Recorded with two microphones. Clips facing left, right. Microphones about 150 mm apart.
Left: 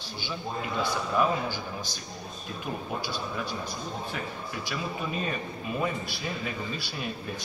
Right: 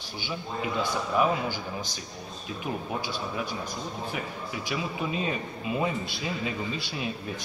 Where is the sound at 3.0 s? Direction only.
15° right (ahead or behind).